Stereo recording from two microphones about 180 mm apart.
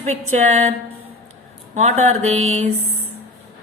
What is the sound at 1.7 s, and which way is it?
Speech, 40° right (ahead or behind).